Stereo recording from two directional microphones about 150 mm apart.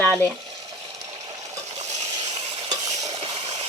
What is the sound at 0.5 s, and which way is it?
Water, 25° right (ahead or behind).